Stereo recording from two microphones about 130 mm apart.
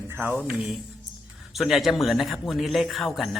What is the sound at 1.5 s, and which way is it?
A man's voice, centre (ahead or behind).